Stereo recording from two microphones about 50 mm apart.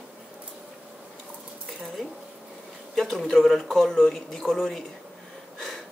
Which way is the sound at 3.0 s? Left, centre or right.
Centre.